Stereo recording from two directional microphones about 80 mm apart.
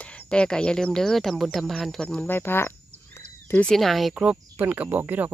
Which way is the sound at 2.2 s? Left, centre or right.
Left.